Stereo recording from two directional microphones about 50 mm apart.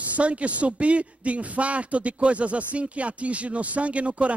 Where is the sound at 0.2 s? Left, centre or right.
Right.